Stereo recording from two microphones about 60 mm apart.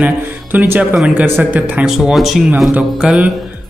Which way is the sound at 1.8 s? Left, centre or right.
Centre.